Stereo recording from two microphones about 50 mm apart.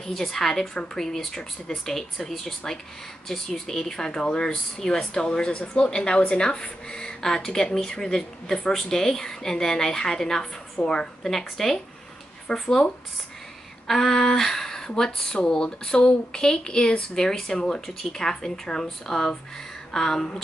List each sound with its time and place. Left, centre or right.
0.0 s speech: centre
11.2 s speech: centre